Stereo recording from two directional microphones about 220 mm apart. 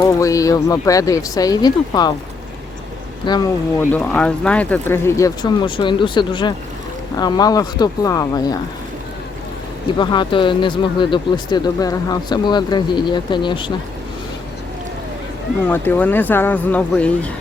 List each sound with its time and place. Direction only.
0.0 s speech: 15° left (ahead or behind)
3.2 s speech: 20° left (ahead or behind)
10.0 s speech: 20° left (ahead or behind)
15.6 s speech: 10° left (ahead or behind)